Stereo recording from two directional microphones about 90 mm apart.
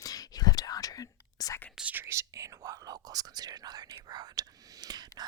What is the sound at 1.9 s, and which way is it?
Speech, 30° right (ahead or behind).